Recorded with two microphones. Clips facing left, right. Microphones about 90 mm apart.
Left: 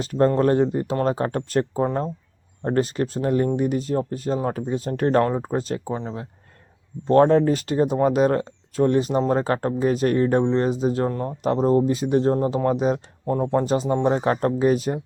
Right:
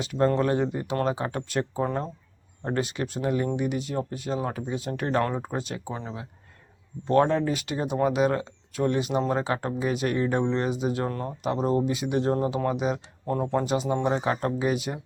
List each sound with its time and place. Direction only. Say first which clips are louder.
0.0 s speech: left 5 dB; 40° left (ahead or behind)
7.1 s speech: left 6 dB; 40° left (ahead or behind)
11.1 s speech: left 5 dB; 20° left (ahead or behind)
11.4 s speech: left 6 dB; 35° left (ahead or behind)